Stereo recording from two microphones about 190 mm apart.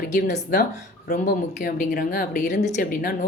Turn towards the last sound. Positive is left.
turn(degrees=45)  # may be behind; listen again after turning